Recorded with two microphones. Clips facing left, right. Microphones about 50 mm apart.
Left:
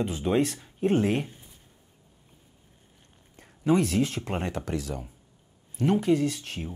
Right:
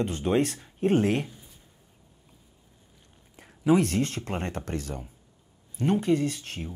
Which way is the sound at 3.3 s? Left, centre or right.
Centre.